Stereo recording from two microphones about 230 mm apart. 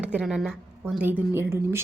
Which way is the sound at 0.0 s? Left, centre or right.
Centre.